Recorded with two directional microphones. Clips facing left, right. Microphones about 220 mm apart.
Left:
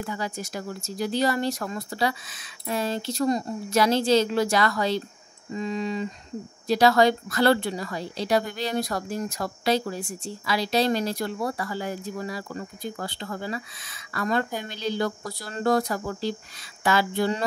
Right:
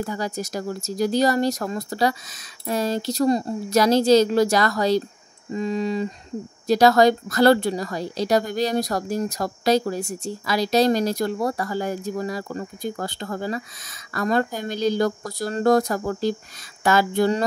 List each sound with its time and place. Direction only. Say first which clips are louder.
0.0 s a woman's voice: right 4 dB; 40° right (ahead or behind)